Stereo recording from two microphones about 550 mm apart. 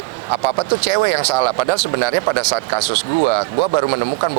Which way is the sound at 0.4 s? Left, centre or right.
Right.